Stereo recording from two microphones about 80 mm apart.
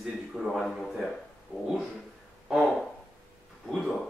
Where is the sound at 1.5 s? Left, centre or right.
Centre.